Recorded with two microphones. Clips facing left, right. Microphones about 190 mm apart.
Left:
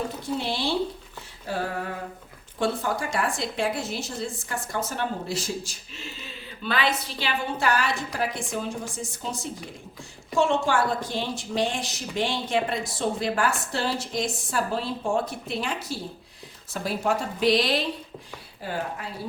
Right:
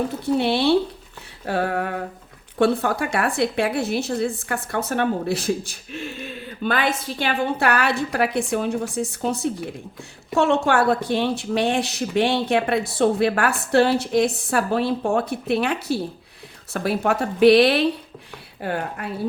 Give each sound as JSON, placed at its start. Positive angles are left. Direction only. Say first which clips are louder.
{"t": 0.3, "sound": "a woman's voice", "louder": "right 9 dB", "side_deg": -65}